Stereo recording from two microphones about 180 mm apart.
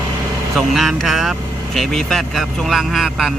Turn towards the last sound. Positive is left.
turn(degrees=0)  # may be behind; listen again after turning